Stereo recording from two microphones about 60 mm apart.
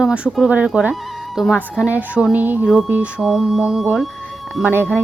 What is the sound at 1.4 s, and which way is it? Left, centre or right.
Speech, centre.